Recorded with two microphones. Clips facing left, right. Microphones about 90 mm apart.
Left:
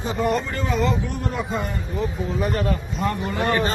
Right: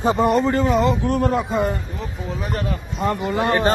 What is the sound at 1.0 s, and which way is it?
Speech, 75° right (ahead or behind).